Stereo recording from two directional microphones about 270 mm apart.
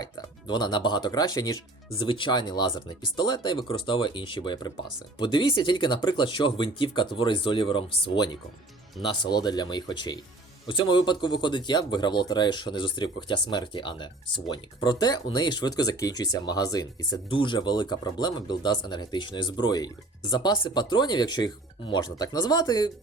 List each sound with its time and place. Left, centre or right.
0.0 s speech: centre